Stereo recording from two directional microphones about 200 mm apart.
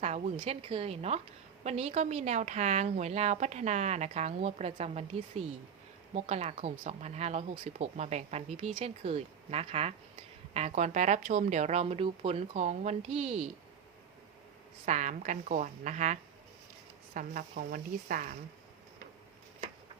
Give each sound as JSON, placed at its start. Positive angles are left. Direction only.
{"t": 0.0, "sound": "speech", "side_deg": -30}
{"t": 14.8, "sound": "speech", "side_deg": -35}
{"t": 17.2, "sound": "a woman's voice", "side_deg": -45}